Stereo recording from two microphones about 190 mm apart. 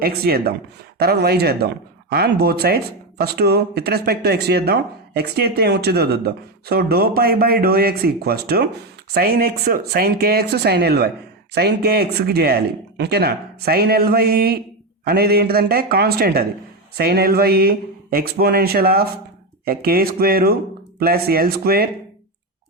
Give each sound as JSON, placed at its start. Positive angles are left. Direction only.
{"t": 0.0, "sound": "speech", "side_deg": -50}